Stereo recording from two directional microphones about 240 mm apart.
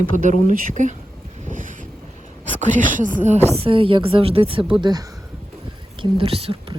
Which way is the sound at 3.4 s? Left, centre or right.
Right.